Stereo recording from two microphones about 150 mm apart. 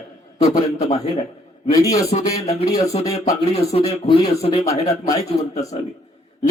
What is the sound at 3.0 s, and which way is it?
Speech, 20° left (ahead or behind).